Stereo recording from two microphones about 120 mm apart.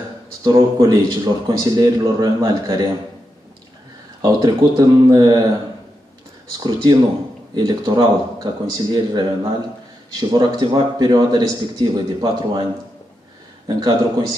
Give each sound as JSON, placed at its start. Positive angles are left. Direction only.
{"t": 0.4, "sound": "speech", "side_deg": -35}
{"t": 4.2, "sound": "speech", "side_deg": -30}
{"t": 6.6, "sound": "speech", "side_deg": -35}
{"t": 13.7, "sound": "speech", "side_deg": -35}